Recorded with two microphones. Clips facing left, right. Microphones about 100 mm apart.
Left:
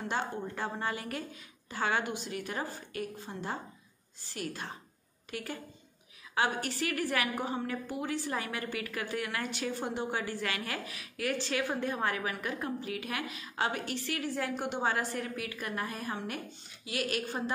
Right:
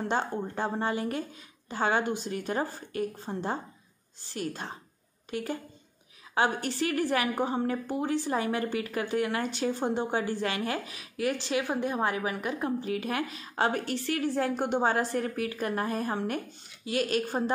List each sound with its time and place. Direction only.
0.0 s a woman's voice: 30° right (ahead or behind)